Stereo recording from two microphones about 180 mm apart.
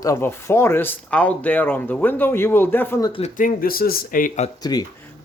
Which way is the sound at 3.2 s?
50° left (ahead or behind).